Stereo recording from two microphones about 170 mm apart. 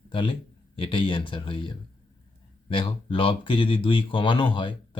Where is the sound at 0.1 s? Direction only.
30° left (ahead or behind).